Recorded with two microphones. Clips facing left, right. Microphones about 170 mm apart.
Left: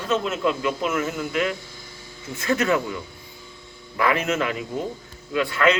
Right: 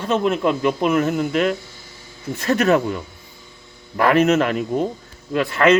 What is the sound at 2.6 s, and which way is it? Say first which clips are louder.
Speech: right 6 dB; 60° right (ahead or behind).